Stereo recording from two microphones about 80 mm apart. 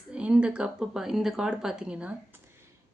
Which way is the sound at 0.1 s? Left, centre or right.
Centre.